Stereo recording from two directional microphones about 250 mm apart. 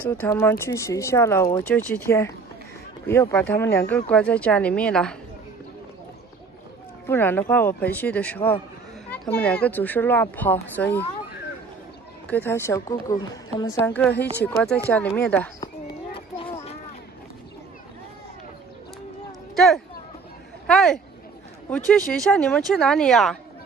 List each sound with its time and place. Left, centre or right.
0.2 s speech: centre
7.1 s speech: centre
12.3 s speech: centre
16.1 s a sound: left
19.5 s a sound: centre
21.6 s speech: centre